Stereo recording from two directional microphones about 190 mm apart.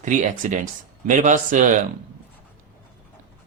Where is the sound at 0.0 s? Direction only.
40° right (ahead or behind).